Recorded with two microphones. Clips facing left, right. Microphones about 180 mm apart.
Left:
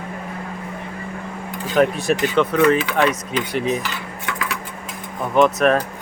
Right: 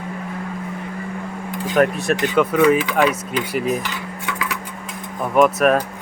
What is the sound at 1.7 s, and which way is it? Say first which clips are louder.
Speech: even; centre (ahead or behind).